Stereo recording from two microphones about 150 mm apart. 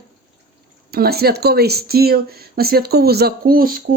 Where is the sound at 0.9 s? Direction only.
90° right.